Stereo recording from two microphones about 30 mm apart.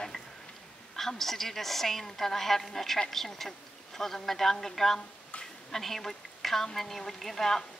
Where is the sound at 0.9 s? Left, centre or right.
Centre.